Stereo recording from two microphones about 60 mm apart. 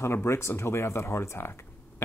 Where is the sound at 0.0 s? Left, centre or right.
Left.